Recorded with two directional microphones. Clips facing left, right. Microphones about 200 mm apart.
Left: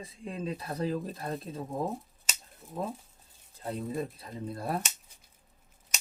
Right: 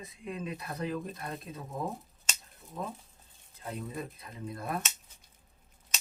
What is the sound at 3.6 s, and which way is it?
A man's voice, 30° left (ahead or behind).